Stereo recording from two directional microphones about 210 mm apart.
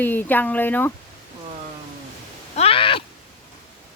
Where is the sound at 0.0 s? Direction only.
10° left (ahead or behind).